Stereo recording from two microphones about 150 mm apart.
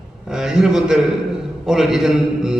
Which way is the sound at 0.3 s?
5° right (ahead or behind).